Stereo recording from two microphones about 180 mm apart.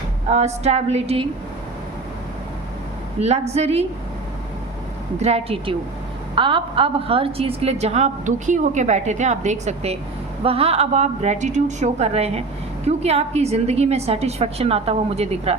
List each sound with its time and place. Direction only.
0.3 s a woman's voice: 35° right (ahead or behind)
3.2 s a woman's voice: 35° right (ahead or behind)
5.2 s a woman's voice: 35° right (ahead or behind)